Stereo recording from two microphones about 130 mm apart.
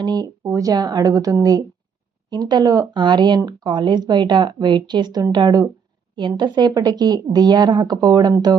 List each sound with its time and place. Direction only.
0.0 s a woman's voice: 30° right (ahead or behind)